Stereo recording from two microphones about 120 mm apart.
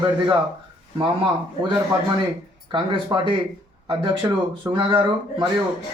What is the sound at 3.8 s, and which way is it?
A man's voice, 45° right (ahead or behind).